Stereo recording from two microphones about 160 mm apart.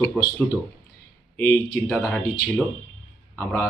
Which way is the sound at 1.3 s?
15° left (ahead or behind).